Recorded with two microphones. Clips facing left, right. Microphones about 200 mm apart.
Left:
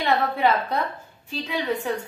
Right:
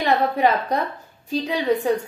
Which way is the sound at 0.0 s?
40° right (ahead or behind).